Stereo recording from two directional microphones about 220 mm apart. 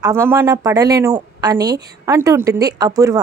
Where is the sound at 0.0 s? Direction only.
10° right (ahead or behind).